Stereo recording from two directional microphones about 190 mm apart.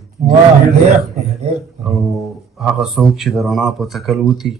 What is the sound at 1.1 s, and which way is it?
Speech, 35° right (ahead or behind).